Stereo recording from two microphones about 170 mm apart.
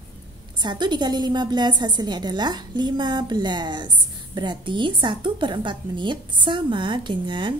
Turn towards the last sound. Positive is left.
turn(degrees=-25)  # may be behind; listen again after turning